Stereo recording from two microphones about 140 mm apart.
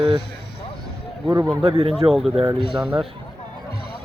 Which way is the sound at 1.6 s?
45° right (ahead or behind).